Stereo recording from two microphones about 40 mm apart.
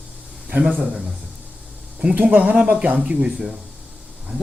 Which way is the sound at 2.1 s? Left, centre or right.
Right.